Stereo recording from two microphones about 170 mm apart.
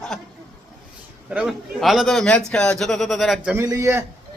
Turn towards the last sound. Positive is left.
turn(degrees=-15)  # may be behind; listen again after turning